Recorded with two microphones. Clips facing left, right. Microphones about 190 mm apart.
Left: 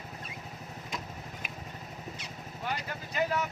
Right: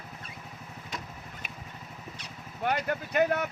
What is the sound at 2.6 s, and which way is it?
Speech, 60° right (ahead or behind).